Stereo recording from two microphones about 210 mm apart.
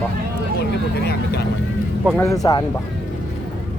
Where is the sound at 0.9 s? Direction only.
50° left (ahead or behind).